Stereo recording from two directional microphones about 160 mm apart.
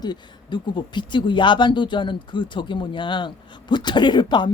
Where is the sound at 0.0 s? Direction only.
30° left (ahead or behind).